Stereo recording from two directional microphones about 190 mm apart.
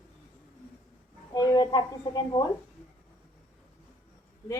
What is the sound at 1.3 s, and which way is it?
A woman's voice, 20° left (ahead or behind).